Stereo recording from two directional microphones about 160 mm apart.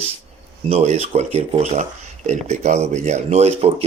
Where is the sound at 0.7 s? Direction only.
40° right (ahead or behind).